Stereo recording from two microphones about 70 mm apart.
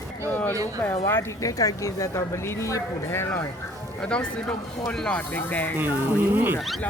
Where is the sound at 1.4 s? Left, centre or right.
Left.